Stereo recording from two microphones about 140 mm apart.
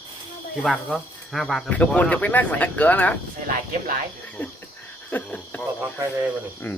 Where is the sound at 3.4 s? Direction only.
70° right (ahead or behind).